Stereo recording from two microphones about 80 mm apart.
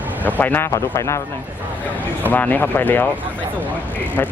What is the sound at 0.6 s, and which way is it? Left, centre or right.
Speech, left.